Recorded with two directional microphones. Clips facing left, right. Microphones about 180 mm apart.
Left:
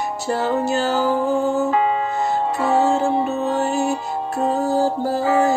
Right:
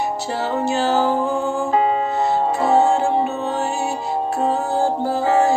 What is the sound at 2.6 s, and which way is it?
Music, 35° right (ahead or behind).